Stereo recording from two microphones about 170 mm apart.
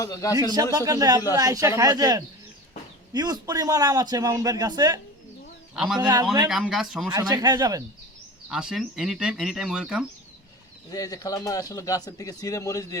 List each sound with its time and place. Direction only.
0.0 s speech: 20° left (ahead or behind)
0.5 s a man's voice: 20° right (ahead or behind)
5.7 s speech: 5° right (ahead or behind)
7.1 s a man's voice: 25° right (ahead or behind)
8.4 s speech: 5° right (ahead or behind)
10.9 s speech: 20° left (ahead or behind)